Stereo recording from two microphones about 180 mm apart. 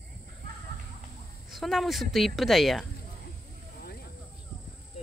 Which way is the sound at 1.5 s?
Centre (ahead or behind).